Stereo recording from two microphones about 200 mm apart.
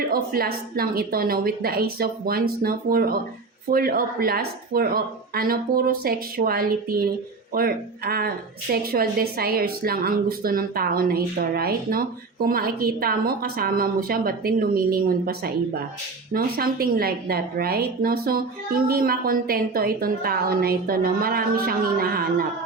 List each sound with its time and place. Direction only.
0.1 s a woman's voice: 50° right (ahead or behind)